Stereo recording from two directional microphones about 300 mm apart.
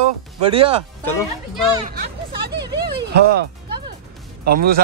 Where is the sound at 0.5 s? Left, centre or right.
Centre.